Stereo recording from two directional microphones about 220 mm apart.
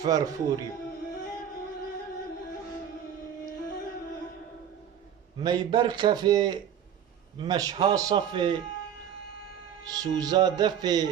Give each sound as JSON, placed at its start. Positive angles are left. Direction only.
{"t": 0.0, "sound": "a man's voice", "side_deg": -15}
{"t": 5.4, "sound": "a man's voice", "side_deg": -20}
{"t": 9.9, "sound": "a man's voice", "side_deg": -15}